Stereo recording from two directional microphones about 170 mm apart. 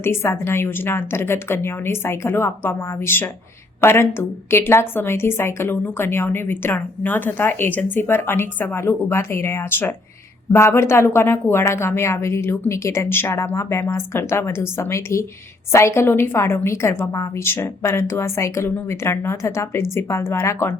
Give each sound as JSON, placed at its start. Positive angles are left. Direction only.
{"t": 0.0, "sound": "a woman's voice", "side_deg": 15}